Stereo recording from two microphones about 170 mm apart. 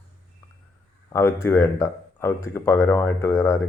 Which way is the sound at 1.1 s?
15° left (ahead or behind).